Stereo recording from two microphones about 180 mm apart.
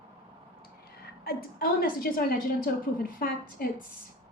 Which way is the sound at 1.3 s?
55° left (ahead or behind).